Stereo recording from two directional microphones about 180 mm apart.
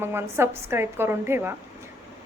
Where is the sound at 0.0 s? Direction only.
15° right (ahead or behind).